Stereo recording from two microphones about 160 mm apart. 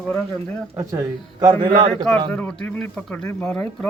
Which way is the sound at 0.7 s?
20° right (ahead or behind).